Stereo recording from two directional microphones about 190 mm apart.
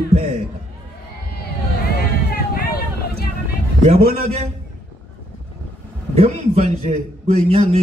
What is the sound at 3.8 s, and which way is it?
Speech, 35° right (ahead or behind).